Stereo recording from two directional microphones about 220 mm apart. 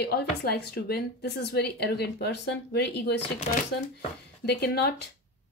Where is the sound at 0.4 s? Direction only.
45° left (ahead or behind).